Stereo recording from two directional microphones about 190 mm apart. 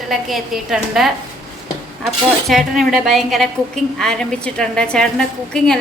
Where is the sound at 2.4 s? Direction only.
Centre (ahead or behind).